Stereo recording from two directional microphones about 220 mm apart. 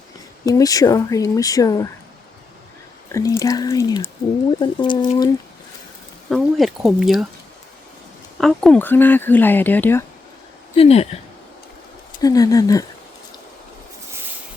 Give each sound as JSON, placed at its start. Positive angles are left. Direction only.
{"t": 0.4, "sound": "speech", "side_deg": 15}
{"t": 3.1, "sound": "speech", "side_deg": 15}
{"t": 6.3, "sound": "speech", "side_deg": 0}
{"t": 8.4, "sound": "speech", "side_deg": 0}
{"t": 10.8, "sound": "speech", "side_deg": 30}
{"t": 12.2, "sound": "speech", "side_deg": 15}